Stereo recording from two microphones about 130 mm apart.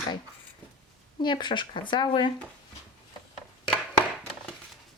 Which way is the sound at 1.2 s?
35° left (ahead or behind).